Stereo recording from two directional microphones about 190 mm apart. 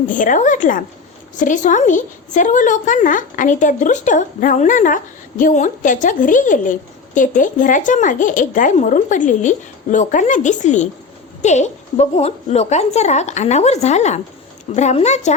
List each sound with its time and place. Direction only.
0.1 s a woman's voice: 45° left (ahead or behind)